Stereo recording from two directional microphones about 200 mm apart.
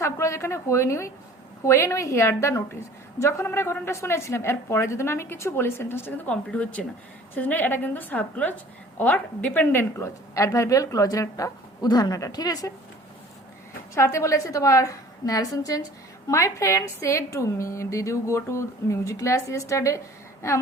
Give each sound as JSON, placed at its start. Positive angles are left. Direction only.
{"t": 0.0, "sound": "a woman's voice", "side_deg": 15}
{"t": 13.9, "sound": "a woman's voice", "side_deg": 15}